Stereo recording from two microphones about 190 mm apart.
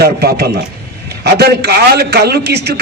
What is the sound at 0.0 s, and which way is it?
A man's voice, 55° right (ahead or behind).